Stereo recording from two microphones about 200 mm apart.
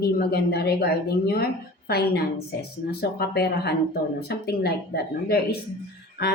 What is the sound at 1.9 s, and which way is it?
A woman's voice, 55° left (ahead or behind).